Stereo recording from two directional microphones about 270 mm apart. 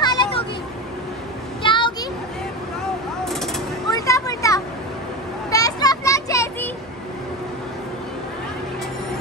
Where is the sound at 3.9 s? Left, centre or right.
Centre.